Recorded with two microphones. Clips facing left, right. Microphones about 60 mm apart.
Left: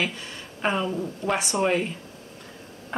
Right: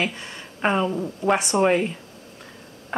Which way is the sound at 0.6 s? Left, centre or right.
Centre.